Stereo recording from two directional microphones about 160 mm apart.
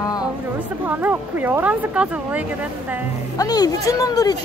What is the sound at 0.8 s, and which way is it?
Speech, 10° right (ahead or behind).